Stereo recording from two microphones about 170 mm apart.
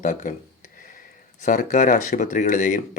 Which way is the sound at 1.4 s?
50° left (ahead or behind).